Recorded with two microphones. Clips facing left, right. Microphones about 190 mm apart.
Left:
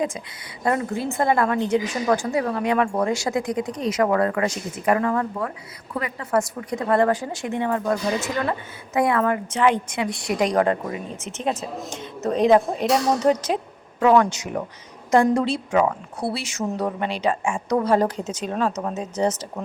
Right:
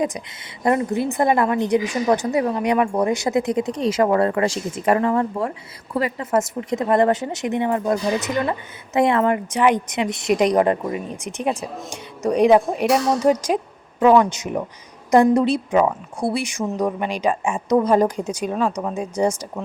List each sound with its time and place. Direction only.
0.6 s a woman's voice: 20° right (ahead or behind)